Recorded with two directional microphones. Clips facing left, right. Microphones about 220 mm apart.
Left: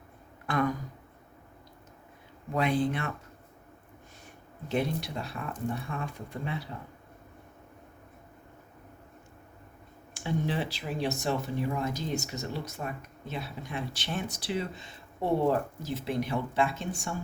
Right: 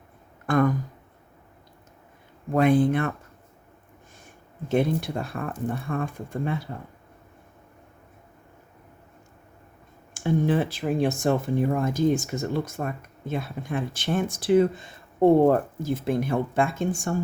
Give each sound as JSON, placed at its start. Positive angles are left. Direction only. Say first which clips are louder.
{"t": 0.4, "sound": "speech", "louder": "right 7 dB", "side_deg": -50}
{"t": 2.5, "sound": "speech", "louder": "right 8 dB", "side_deg": -50}
{"t": 4.7, "sound": "speech", "louder": "right 7 dB", "side_deg": -50}
{"t": 10.2, "sound": "speech", "louder": "right 8 dB", "side_deg": -50}